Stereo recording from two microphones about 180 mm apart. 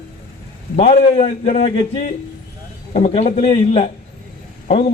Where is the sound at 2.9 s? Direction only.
35° left (ahead or behind).